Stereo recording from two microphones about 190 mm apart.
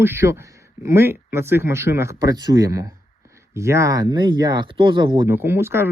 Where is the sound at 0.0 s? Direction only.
15° right (ahead or behind).